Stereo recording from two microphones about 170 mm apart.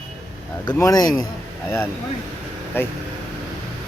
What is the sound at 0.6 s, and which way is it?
Speech, 25° left (ahead or behind).